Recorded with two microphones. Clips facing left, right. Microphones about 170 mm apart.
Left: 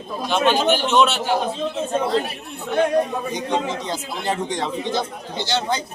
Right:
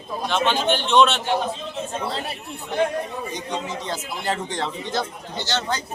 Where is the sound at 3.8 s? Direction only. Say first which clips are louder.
Left 2 dB; 15° left (ahead or behind).